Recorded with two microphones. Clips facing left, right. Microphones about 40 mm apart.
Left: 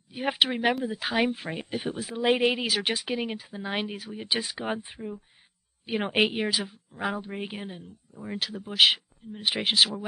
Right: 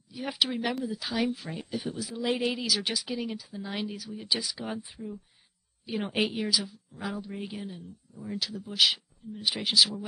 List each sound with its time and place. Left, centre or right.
0.1 s a woman's voice: left